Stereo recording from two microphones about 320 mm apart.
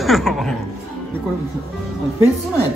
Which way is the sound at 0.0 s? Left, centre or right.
Centre.